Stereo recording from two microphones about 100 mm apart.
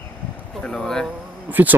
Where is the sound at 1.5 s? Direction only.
20° right (ahead or behind).